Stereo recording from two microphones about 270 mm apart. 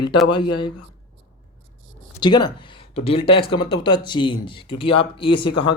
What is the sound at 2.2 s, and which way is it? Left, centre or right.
Speech, centre.